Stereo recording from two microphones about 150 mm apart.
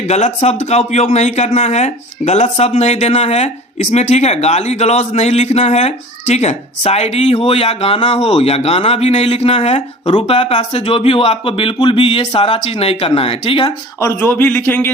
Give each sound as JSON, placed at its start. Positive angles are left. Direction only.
{"t": 0.1, "sound": "speech", "side_deg": 45}
{"t": 14.0, "sound": "a man's voice", "side_deg": 20}